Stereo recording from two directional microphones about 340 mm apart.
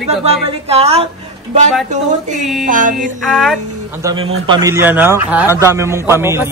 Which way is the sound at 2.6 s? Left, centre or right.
Right.